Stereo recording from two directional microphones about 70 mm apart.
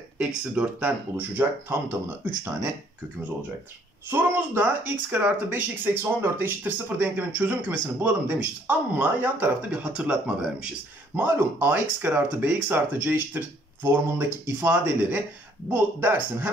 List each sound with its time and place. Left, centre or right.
0.2 s speech: centre
4.1 s speech: right
11.1 s speech: right
14.1 s speech: right